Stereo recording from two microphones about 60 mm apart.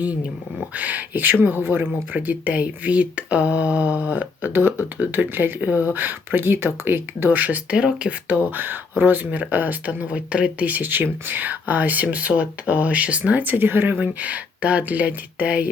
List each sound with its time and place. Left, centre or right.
0.8 s speech: right
4.9 s speech: right
5.3 s speech: right
7.3 s speech: right
8.4 s speech: right